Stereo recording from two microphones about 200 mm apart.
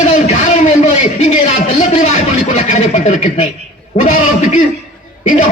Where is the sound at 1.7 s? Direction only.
35° left (ahead or behind).